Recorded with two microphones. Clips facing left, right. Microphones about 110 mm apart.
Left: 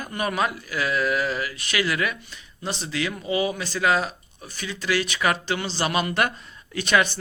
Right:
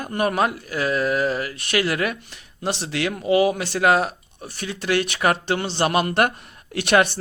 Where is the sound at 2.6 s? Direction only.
75° right (ahead or behind).